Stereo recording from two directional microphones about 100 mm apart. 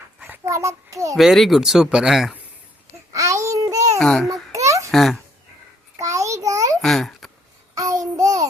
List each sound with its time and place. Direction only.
0.4 s a child's voice: 30° right (ahead or behind)
1.1 s speech: centre (ahead or behind)
3.1 s child singing: 35° right (ahead or behind)
4.0 s speech: 5° left (ahead or behind)
4.5 s babbling: 30° right (ahead or behind)
4.9 s speech: centre (ahead or behind)
6.0 s a sound: 30° right (ahead or behind)
6.8 s a child's voice: 5° left (ahead or behind)
7.8 s babbling: 35° right (ahead or behind)